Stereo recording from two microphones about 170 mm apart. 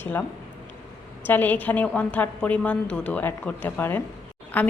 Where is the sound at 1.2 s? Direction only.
10° left (ahead or behind).